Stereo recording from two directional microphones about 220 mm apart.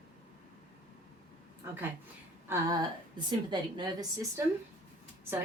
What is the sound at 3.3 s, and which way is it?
Speech, 20° right (ahead or behind).